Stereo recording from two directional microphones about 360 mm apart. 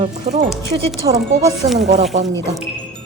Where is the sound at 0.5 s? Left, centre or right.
Centre.